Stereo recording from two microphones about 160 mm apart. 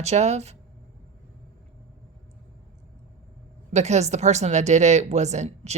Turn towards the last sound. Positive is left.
turn(degrees=-45)  # may be behind; listen again after turning